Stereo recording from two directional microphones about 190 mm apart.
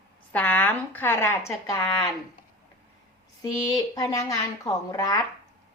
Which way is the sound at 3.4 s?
20° left (ahead or behind).